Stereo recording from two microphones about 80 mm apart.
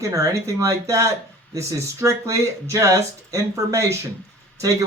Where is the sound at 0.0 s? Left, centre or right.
Right.